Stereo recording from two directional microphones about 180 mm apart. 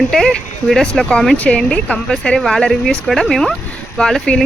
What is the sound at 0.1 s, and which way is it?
Speech, 5° left (ahead or behind).